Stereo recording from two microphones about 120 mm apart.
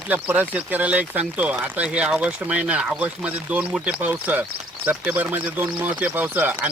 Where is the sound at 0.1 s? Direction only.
15° right (ahead or behind).